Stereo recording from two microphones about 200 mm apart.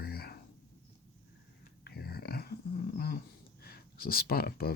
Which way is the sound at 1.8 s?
50° left (ahead or behind).